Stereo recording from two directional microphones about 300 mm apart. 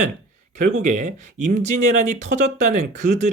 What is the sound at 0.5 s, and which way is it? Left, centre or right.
Speech, right.